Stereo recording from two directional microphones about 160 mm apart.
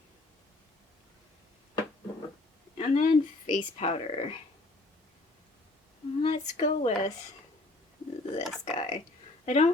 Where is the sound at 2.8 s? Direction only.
50° left (ahead or behind).